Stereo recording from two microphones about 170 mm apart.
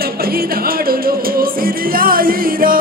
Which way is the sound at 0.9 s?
60° right (ahead or behind).